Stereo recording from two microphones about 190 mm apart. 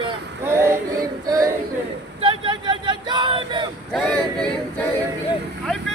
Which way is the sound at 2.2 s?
25° right (ahead or behind).